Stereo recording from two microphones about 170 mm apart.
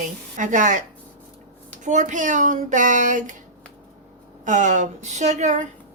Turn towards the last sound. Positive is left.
turn(degrees=-45)  # may be behind; listen again after turning